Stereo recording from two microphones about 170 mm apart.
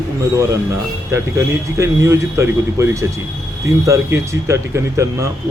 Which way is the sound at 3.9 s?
15° right (ahead or behind).